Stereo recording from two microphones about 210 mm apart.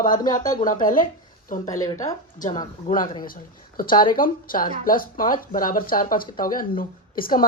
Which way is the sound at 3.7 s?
40° left (ahead or behind).